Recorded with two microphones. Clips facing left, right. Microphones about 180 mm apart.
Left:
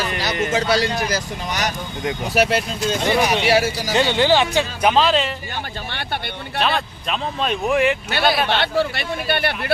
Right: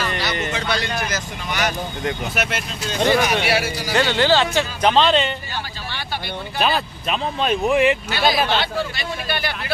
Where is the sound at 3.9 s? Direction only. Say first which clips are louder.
Left 1 dB; 15° left (ahead or behind); by 5.3 s centre (ahead or behind).